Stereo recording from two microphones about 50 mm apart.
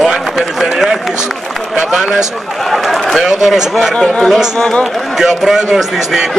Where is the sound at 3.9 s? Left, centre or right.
Centre.